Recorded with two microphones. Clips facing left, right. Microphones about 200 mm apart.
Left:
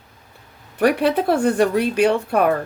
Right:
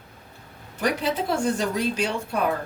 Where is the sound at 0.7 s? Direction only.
60° left (ahead or behind).